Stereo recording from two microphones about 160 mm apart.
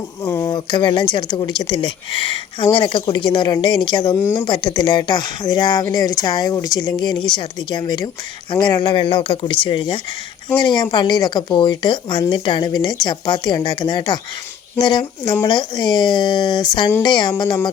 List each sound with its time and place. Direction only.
0.3 s speech: 20° left (ahead or behind)